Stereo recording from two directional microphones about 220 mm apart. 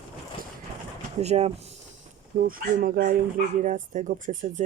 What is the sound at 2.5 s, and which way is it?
Speech, 40° right (ahead or behind).